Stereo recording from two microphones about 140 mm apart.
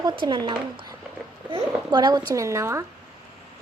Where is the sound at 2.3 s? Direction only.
20° right (ahead or behind).